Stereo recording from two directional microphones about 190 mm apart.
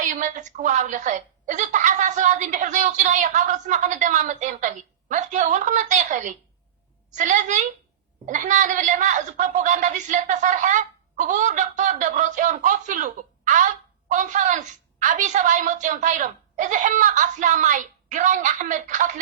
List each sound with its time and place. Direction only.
0.0 s a woman's voice: 40° right (ahead or behind)